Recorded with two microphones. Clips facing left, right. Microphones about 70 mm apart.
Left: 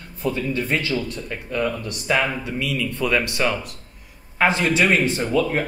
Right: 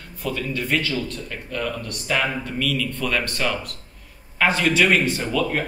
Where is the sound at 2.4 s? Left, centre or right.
Centre.